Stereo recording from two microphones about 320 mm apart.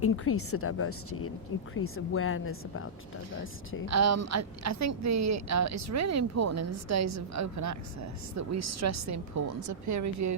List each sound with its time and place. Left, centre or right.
0.0 s a woman's voice: left
3.8 s a woman's voice: right